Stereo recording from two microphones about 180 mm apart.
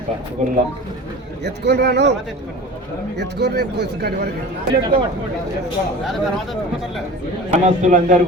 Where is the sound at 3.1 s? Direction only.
70° right (ahead or behind).